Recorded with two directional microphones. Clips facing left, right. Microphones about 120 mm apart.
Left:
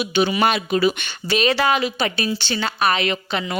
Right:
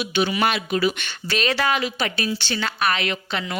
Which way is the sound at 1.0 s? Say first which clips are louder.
Left 5 dB; 15° left (ahead or behind).